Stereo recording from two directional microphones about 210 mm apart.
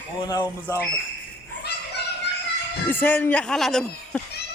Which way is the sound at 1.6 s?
50° left (ahead or behind).